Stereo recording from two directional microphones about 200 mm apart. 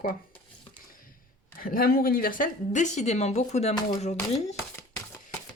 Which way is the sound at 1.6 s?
45° left (ahead or behind).